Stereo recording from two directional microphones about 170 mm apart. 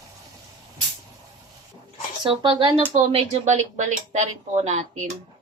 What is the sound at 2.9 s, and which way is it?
Speech, 40° right (ahead or behind).